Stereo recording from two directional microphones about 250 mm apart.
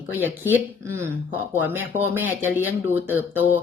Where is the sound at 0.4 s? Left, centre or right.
Centre.